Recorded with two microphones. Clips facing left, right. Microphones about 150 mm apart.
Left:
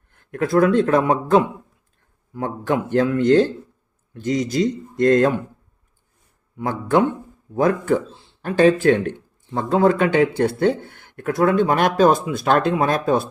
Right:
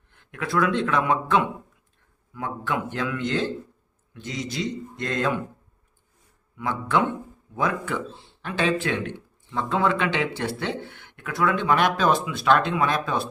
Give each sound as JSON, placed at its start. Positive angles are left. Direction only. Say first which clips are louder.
{"t": 0.1, "sound": "speech", "louder": "left 8 dB", "side_deg": 45}
{"t": 6.6, "sound": "speech", "louder": "left 5 dB", "side_deg": 45}